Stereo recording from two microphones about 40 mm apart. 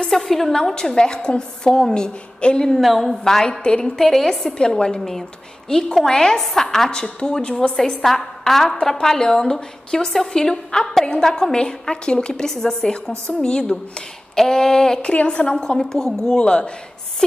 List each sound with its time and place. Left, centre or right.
0.1 s a woman's voice: centre
0.5 s a woman's voice: centre
2.7 s a woman's voice: centre
3.3 s a woman's voice: centre
4.6 s a woman's voice: centre
15.0 s a woman's voice: left
16.3 s a woman's voice: left